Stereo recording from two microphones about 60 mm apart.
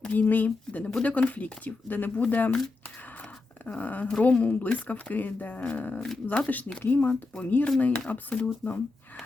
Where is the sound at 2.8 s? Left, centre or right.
Left.